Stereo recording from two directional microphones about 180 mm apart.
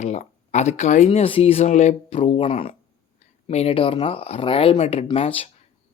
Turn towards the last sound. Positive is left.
turn(degrees=35)  # may be behind; listen again after turning